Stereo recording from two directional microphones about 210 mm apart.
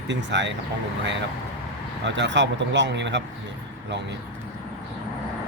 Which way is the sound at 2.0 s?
60° right (ahead or behind).